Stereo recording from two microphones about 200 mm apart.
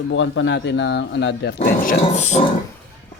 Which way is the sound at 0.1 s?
70° left (ahead or behind).